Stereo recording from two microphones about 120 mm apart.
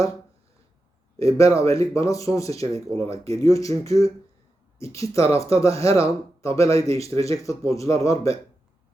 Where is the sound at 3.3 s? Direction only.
25° left (ahead or behind).